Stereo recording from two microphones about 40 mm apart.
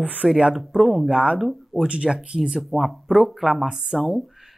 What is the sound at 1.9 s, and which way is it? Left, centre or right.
Speech, right.